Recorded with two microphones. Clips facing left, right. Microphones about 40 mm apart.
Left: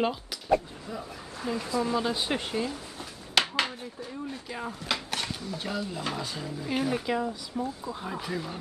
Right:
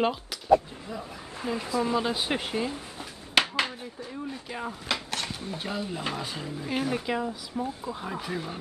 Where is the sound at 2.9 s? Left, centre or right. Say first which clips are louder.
Right 2 dB; centre.